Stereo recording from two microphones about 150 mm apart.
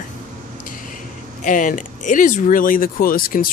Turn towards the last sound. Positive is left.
turn(degrees=70)  # may be behind; listen again after turning